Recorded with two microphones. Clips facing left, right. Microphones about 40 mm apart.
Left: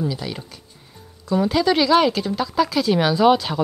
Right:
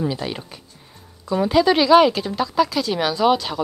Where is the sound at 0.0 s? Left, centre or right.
Right.